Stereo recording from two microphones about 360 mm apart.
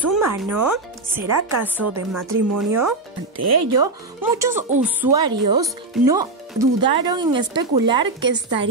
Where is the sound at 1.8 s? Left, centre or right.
Right.